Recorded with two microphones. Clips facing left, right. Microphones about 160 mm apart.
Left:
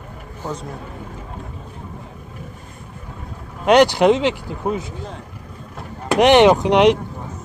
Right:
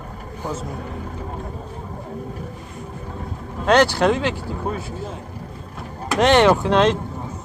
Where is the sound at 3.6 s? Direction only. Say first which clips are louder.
Left 3 dB; 15° left (ahead or behind).